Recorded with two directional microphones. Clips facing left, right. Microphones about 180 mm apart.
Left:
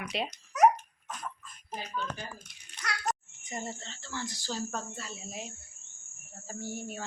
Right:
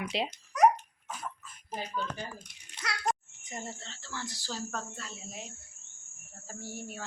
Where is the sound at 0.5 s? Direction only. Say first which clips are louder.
Left 1 dB; centre (ahead or behind).